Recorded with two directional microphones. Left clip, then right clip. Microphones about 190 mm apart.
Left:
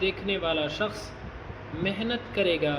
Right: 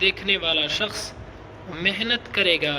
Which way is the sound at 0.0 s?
60° right (ahead or behind).